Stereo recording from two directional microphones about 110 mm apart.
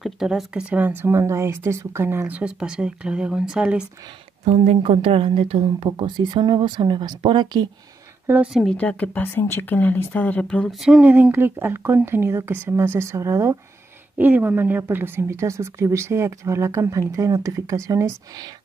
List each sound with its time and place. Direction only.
0.0 s speech: centre (ahead or behind)
4.5 s a woman's voice: 70° right (ahead or behind)
5.9 s speech: 40° right (ahead or behind)
8.7 s speech: 15° left (ahead or behind)
10.7 s speech: 5° right (ahead or behind); by 13.6 s 25° right (ahead or behind)
14.1 s speech: 15° right (ahead or behind); by 18.5 s 30° right (ahead or behind)